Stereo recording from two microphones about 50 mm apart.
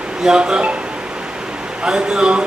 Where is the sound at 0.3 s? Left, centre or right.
Centre.